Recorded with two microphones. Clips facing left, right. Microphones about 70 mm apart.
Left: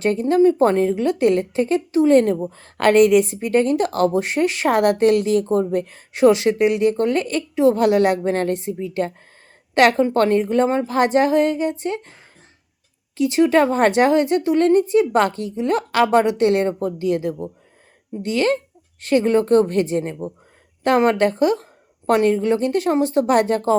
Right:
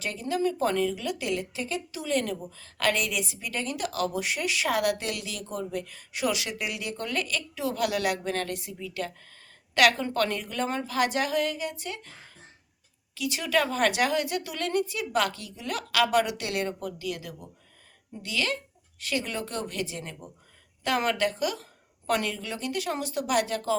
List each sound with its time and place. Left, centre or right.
0.0 s a woman's voice: left
13.1 s a woman's voice: left